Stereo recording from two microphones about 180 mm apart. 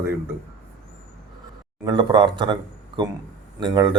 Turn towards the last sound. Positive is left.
turn(degrees=-25)  # may be behind; listen again after turning